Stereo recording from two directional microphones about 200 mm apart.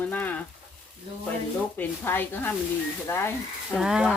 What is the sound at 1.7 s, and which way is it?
Speech, 10° left (ahead or behind).